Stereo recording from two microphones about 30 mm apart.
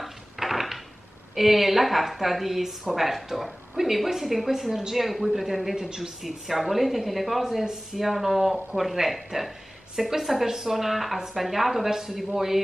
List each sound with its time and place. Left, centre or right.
0.0 s a sound: centre
1.3 s a woman's voice: centre
11.9 s a woman's voice: centre